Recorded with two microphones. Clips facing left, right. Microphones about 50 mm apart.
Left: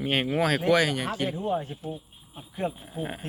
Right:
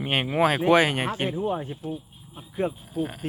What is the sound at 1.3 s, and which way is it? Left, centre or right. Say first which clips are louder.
Speech: right 1 dB; centre.